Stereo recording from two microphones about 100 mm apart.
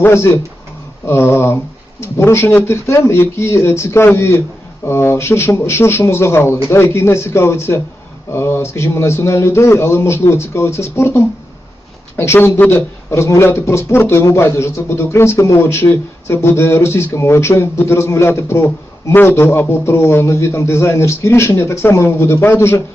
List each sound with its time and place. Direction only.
0.0 s a man's voice: 25° left (ahead or behind)